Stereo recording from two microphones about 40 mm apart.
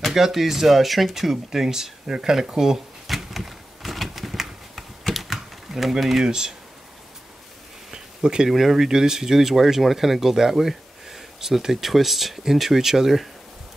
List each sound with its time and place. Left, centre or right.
0.0 s speech: centre
3.1 s a sound: centre
5.1 s typing: centre
6.2 s speech: centre
7.9 s a sound: centre
8.5 s speech: centre